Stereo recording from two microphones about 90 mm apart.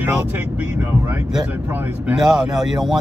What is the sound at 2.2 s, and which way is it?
Speech, 10° right (ahead or behind).